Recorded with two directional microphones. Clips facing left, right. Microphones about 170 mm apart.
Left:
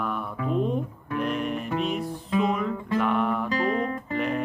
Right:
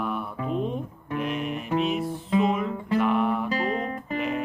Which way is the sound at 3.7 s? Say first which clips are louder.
Left 2 dB; 30° right (ahead or behind).